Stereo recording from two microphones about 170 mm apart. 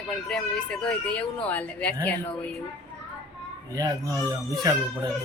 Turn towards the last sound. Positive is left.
turn(degrees=-20)  # may be behind; listen again after turning